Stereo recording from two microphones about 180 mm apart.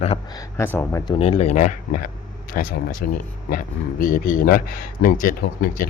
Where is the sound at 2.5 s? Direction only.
55° left (ahead or behind).